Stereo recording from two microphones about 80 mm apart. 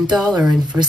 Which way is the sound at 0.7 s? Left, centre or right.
Right.